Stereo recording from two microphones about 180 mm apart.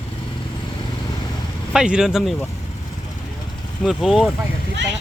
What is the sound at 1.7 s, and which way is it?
Speech, 5° right (ahead or behind).